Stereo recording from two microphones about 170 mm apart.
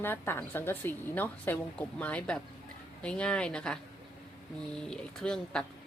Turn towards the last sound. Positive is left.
turn(degrees=5)  # may be behind; listen again after turning